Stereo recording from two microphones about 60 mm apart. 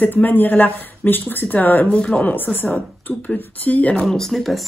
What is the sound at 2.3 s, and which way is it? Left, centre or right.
A woman's voice, left.